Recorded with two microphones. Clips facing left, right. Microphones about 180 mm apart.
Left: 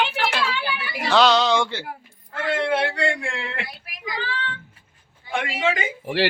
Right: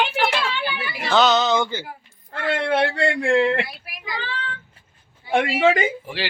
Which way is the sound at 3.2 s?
40° right (ahead or behind).